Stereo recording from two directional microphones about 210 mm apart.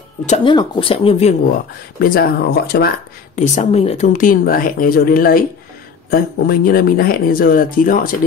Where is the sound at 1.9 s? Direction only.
45° left (ahead or behind).